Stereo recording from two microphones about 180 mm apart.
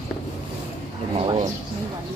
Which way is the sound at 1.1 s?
35° right (ahead or behind).